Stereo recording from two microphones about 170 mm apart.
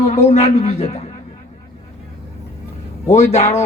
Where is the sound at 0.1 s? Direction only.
40° left (ahead or behind).